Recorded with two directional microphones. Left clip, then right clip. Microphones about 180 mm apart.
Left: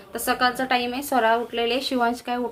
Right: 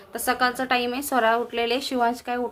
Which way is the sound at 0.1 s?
10° right (ahead or behind).